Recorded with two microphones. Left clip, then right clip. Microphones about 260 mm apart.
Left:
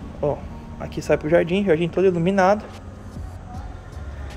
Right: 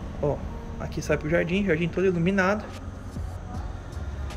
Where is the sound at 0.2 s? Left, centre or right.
Centre.